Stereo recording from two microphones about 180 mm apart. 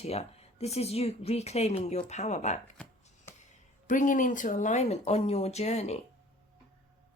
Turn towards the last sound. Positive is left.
turn(degrees=35)  # may be behind; listen again after turning